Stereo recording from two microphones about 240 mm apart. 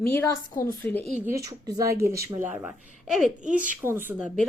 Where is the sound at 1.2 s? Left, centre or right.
Centre.